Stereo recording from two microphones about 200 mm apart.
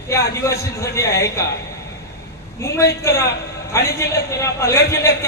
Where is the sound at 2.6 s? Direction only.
15° left (ahead or behind).